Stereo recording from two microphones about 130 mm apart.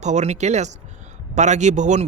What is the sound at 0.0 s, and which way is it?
A man's voice, 60° right (ahead or behind).